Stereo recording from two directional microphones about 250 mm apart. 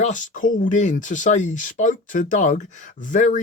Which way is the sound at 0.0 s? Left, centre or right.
Left.